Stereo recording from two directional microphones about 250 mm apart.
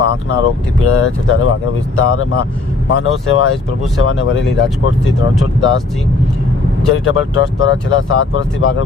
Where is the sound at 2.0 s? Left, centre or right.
Left.